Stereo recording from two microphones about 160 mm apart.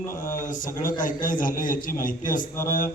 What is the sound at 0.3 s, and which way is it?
A man's voice, 55° left (ahead or behind).